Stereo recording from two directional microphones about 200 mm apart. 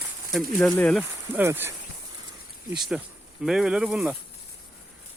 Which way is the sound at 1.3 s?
10° right (ahead or behind).